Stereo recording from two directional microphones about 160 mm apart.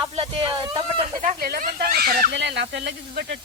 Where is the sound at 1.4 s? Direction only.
70° right (ahead or behind); by 3.2 s 90° right.